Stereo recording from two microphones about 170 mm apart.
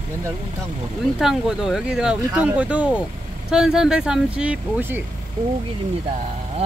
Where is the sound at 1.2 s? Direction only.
Centre (ahead or behind).